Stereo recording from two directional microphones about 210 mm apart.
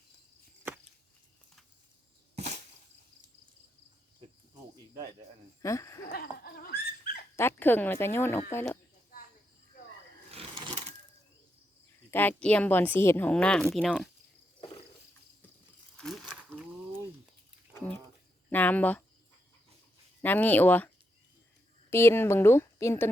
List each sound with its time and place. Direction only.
5.6 s speech: 15° left (ahead or behind)
6.1 s dog: 45° left (ahead or behind)
7.3 s speech: 10° left (ahead or behind)
10.3 s a sound: 25° right (ahead or behind)
12.1 s speech: 5° left (ahead or behind)
16.0 s a sound: centre (ahead or behind)
17.7 s a sound: 10° left (ahead or behind)
18.5 s speech: 10° left (ahead or behind)
20.2 s speech: 10° left (ahead or behind)